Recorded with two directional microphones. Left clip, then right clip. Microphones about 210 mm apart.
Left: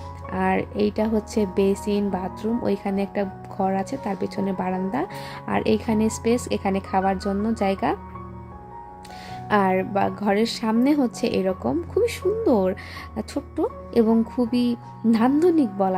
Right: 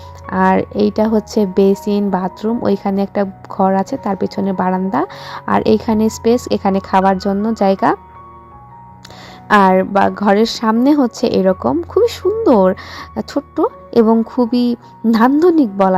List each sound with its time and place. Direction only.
0.3 s a woman's voice: 25° right (ahead or behind)
9.5 s a woman's voice: 25° right (ahead or behind)